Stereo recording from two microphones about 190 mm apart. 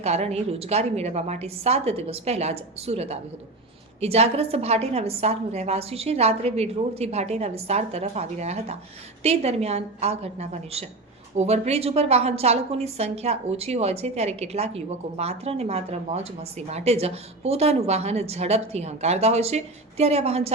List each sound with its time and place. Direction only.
0.0 s a woman's voice: 35° right (ahead or behind)